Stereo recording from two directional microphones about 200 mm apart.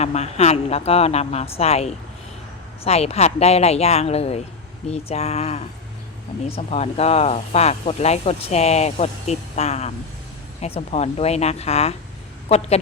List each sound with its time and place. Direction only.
0.0 s speech: 35° left (ahead or behind)